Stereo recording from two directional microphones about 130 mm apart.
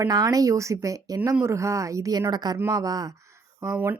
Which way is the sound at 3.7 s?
15° right (ahead or behind).